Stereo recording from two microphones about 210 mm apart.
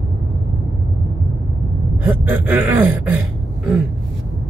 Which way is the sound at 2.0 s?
10° right (ahead or behind).